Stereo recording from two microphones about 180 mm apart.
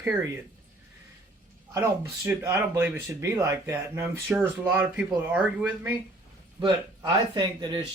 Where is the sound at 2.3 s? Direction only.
10° right (ahead or behind).